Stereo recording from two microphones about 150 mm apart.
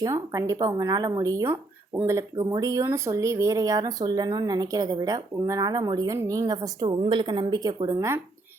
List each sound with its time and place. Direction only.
0.0 s speech: 20° right (ahead or behind)